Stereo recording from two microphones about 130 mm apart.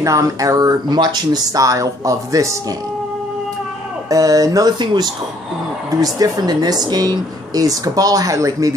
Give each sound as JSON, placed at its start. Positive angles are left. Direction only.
{"t": 0.0, "sound": "speech", "side_deg": -25}
{"t": 4.1, "sound": "speech", "side_deg": -25}